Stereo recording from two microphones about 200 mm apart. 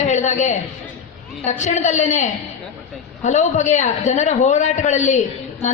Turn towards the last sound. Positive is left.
turn(degrees=35)  # may be behind; listen again after turning